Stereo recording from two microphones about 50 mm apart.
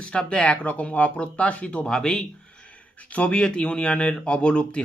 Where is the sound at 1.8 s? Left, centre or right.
Centre.